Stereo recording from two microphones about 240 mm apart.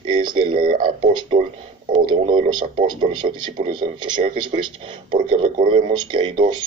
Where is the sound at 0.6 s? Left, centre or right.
Right.